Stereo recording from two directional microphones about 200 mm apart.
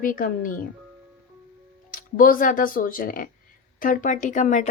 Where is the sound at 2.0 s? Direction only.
45° left (ahead or behind).